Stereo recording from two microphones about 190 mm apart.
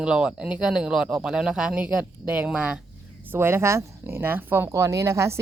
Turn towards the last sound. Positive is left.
turn(degrees=-15)  # may be behind; listen again after turning